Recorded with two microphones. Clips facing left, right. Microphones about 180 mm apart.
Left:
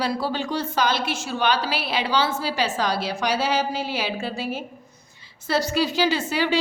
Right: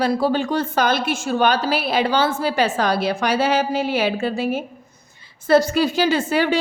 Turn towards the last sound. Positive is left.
turn(degrees=-50)  # may be behind; listen again after turning